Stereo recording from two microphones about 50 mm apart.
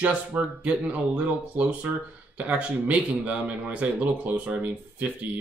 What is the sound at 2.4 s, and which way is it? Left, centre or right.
Speech, right.